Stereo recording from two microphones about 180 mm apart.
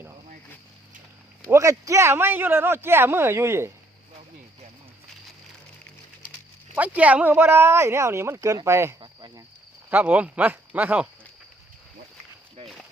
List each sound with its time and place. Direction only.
1.5 s a man's voice: 15° right (ahead or behind)
6.7 s a man's voice: 10° right (ahead or behind)
9.0 s speech: 25° right (ahead or behind)
9.9 s a man's voice: 10° right (ahead or behind)